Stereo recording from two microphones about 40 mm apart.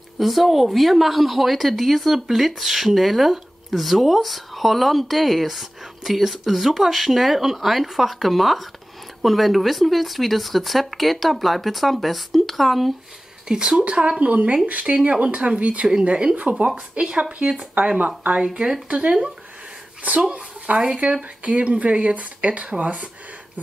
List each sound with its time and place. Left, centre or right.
0.2 s a woman's voice: centre
13.5 s speech: right
14.2 s speech: right
14.9 s speech: right
16.3 s speech: right
17.7 s speech: right
18.4 s speech: right
20.2 s speech: right
21.0 s speech: right